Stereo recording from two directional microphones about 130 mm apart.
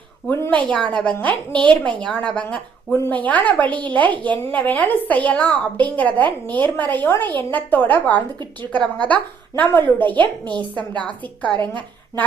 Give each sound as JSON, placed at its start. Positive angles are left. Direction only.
{"t": 0.3, "sound": "a woman's voice", "side_deg": 15}